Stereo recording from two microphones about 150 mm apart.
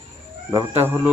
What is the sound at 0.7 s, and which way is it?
Speech, 15° right (ahead or behind).